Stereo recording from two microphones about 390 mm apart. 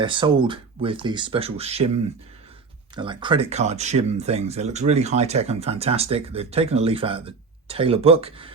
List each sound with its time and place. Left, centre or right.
0.0 s speech: centre
2.9 s speech: centre